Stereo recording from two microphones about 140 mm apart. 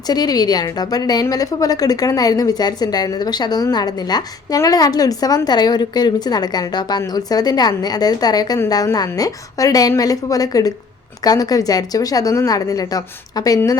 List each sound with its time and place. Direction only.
0.1 s a woman's voice: 30° left (ahead or behind)